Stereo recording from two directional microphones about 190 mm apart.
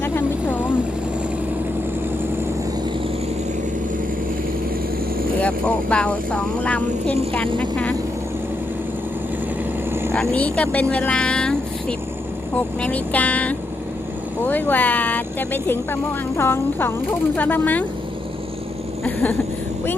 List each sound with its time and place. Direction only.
0.0 s vehicle: 10° left (ahead or behind)
5.4 s speech: 5° left (ahead or behind)
10.1 s speech: 5° left (ahead or behind)
19.0 s speech: 10° left (ahead or behind)